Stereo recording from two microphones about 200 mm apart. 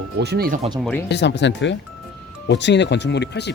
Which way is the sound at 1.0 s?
60° left (ahead or behind).